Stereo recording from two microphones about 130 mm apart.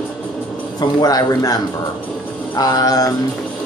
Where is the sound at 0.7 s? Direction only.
30° left (ahead or behind).